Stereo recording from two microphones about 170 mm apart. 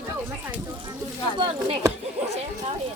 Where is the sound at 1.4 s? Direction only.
30° right (ahead or behind).